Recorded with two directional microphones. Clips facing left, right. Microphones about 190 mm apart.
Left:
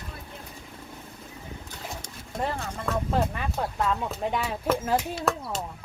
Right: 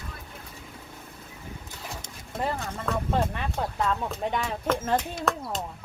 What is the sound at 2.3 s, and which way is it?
Speech, centre (ahead or behind).